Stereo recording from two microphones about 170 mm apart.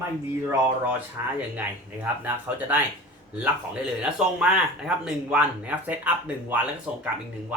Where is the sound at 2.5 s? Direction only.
15° right (ahead or behind).